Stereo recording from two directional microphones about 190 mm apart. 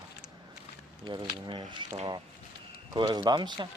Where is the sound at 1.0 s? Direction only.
25° right (ahead or behind).